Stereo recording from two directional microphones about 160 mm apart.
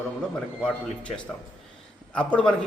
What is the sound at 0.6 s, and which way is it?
A man's voice, 5° left (ahead or behind).